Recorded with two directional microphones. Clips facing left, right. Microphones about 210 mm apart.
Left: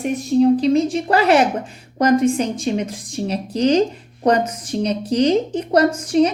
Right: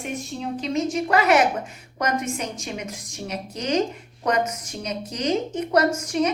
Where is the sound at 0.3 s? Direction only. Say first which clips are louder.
Left 13 dB; 35° left (ahead or behind).